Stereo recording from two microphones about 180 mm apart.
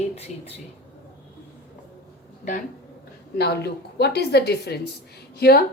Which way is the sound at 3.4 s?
65° left (ahead or behind).